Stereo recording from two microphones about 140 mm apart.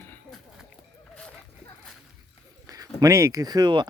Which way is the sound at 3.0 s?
20° right (ahead or behind).